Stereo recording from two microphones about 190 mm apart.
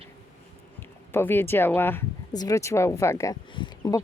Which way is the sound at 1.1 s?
10° left (ahead or behind).